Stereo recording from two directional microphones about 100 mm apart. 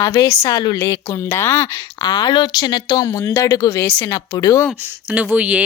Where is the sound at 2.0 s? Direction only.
50° left (ahead or behind).